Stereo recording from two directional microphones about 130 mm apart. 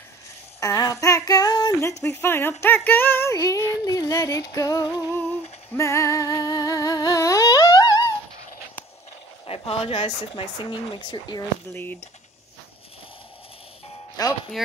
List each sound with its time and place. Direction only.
0.6 s female singing: 25° left (ahead or behind)
3.8 s music: 25° left (ahead or behind)
5.8 s humming: 20° left (ahead or behind)
9.5 s speech: 45° left (ahead or behind)
11.7 s female singing: 15° left (ahead or behind)
14.2 s music: 30° left (ahead or behind)